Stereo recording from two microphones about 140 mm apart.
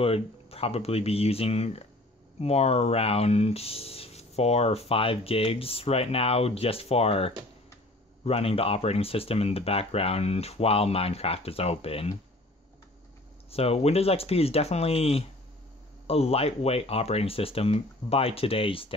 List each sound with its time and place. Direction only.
0.0 s speech: 45° left (ahead or behind)
13.5 s speech: 45° left (ahead or behind)